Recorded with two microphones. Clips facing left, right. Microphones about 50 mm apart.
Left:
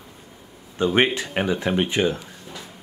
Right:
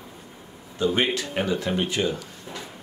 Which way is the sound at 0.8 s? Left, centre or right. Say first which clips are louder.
Left 1 dB; left.